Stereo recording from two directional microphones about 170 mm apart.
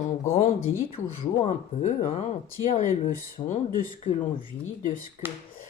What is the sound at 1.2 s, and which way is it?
Speech, 35° left (ahead or behind).